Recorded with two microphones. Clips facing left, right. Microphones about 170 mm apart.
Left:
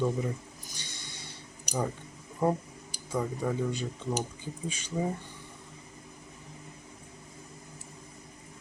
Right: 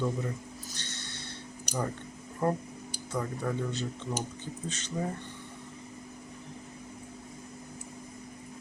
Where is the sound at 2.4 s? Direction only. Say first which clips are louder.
Left 2 dB; 15° left (ahead or behind).